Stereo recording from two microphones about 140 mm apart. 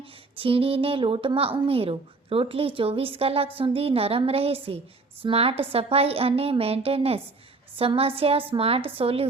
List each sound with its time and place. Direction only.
0.0 s a woman's voice: 40° right (ahead or behind)